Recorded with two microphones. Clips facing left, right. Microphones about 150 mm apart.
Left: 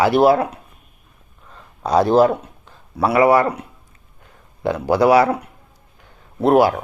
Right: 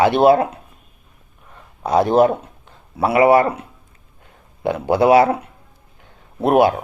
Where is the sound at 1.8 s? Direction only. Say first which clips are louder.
Even; 20° right (ahead or behind).